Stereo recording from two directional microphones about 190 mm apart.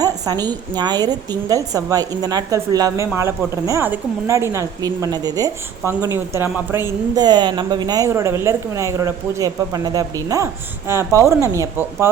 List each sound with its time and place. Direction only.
0.0 s a woman's voice: 20° right (ahead or behind)